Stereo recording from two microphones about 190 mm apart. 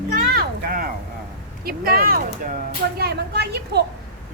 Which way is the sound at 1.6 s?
50° right (ahead or behind).